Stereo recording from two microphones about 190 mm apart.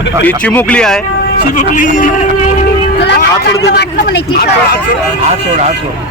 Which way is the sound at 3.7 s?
50° left (ahead or behind).